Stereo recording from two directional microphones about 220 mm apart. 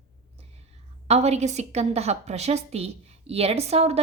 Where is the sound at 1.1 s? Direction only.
30° right (ahead or behind).